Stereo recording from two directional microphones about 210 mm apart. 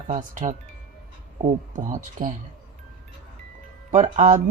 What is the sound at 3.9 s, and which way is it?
Speech, 35° right (ahead or behind).